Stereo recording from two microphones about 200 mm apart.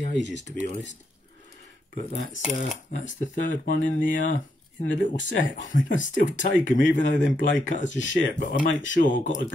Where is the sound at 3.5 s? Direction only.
40° left (ahead or behind).